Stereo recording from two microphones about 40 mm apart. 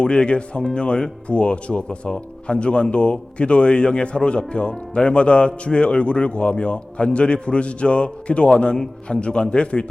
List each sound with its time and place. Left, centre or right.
0.0 s speech: left